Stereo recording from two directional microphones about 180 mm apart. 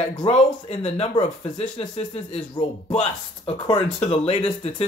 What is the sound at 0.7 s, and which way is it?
Speech, 35° left (ahead or behind).